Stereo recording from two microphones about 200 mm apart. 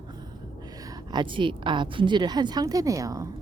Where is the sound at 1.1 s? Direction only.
25° right (ahead or behind).